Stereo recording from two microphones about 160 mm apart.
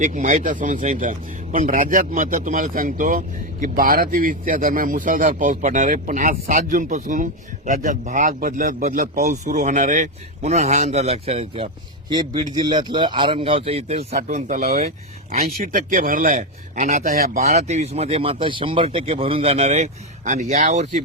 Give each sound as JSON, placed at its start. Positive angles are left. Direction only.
{"t": 0.0, "sound": "a man's voice", "side_deg": -55}
{"t": 14.3, "sound": "speech", "side_deg": -55}
{"t": 15.3, "sound": "a man's voice", "side_deg": -65}
{"t": 17.4, "sound": "speech", "side_deg": -45}